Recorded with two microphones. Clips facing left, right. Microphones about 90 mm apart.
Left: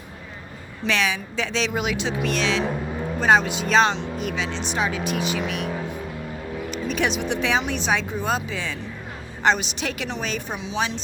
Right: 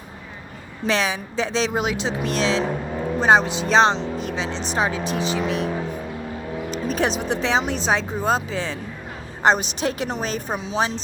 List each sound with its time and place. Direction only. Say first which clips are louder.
0.9 s speech: right 2 dB; 35° right (ahead or behind)
6.7 s speech: right 2 dB; 35° right (ahead or behind)